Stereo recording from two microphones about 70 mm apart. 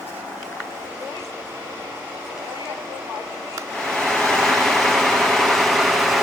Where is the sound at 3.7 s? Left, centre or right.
Centre.